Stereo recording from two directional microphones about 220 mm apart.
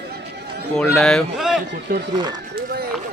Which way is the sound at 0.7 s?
5° left (ahead or behind).